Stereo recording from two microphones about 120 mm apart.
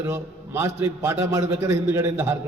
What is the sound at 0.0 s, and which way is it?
A man's voice, 20° right (ahead or behind).